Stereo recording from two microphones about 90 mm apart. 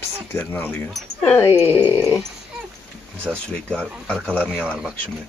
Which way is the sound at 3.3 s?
10° left (ahead or behind).